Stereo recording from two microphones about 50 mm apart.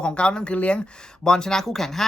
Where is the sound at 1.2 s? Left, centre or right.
Centre.